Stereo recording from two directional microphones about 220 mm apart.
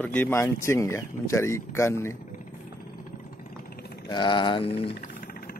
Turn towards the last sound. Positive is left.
turn(degrees=40)  # may be behind; listen again after turning